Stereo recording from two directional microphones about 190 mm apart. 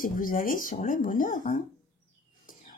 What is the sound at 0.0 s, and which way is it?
A woman's voice, 45° left (ahead or behind).